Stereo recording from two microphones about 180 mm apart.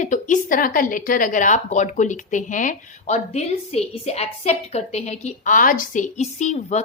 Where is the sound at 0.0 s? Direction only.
45° left (ahead or behind).